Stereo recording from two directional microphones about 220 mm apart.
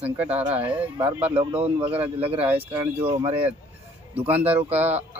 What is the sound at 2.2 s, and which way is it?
Speech, 25° right (ahead or behind).